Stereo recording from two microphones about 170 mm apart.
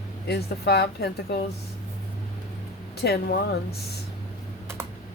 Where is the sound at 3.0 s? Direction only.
70° left (ahead or behind).